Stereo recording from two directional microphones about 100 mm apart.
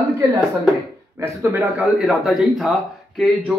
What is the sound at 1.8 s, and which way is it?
A man's voice, centre (ahead or behind).